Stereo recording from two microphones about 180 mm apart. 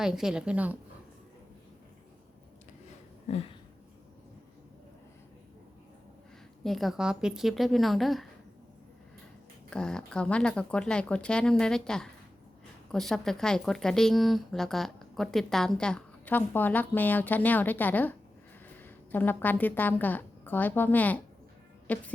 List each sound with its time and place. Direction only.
0.0 s a woman's voice: 5° right (ahead or behind)
3.2 s a sound: 35° left (ahead or behind)
6.6 s a woman's voice: centre (ahead or behind)
9.6 s a woman's voice: 5° left (ahead or behind)